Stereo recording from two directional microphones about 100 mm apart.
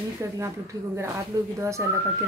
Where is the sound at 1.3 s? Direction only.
40° right (ahead or behind).